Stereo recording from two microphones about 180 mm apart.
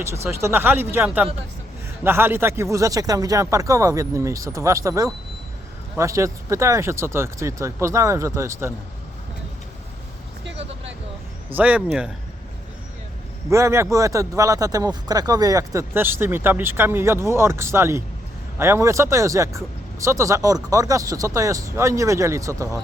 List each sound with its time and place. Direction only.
0.3 s speech: 15° right (ahead or behind)
11.5 s speech: 10° right (ahead or behind)
13.5 s speech: 15° right (ahead or behind)